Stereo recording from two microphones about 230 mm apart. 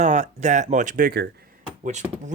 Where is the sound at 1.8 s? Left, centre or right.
Right.